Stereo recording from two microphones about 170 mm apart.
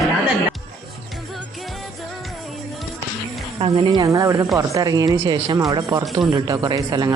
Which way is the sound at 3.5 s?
35° right (ahead or behind).